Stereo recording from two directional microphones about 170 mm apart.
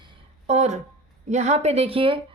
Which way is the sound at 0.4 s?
40° right (ahead or behind).